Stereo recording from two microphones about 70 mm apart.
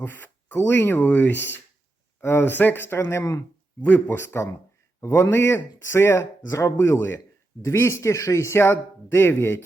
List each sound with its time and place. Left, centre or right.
0.0 s speech: left
3.8 s speech: left
4.0 s speech: left
6.5 s speech: left
6.7 s speech: left